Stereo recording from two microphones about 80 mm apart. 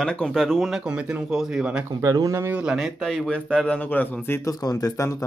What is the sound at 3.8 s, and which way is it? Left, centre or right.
Speech, left.